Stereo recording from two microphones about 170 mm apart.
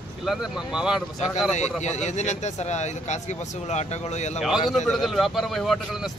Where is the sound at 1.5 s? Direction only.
45° left (ahead or behind).